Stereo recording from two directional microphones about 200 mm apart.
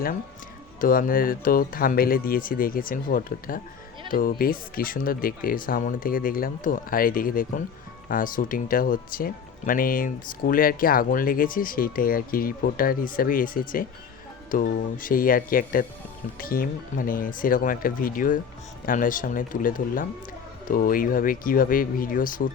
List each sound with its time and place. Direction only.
0.8 s speech: 45° left (ahead or behind)